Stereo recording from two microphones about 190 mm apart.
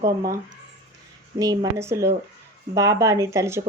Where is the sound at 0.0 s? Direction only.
15° right (ahead or behind).